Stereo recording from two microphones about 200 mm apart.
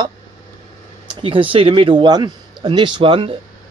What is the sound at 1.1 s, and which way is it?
Speech, 25° right (ahead or behind).